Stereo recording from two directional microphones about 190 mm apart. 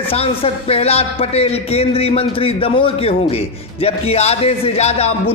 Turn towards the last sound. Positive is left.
turn(degrees=35)  # may be behind; listen again after turning